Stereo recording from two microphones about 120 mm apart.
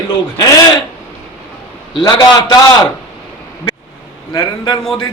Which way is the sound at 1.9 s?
35° left (ahead or behind).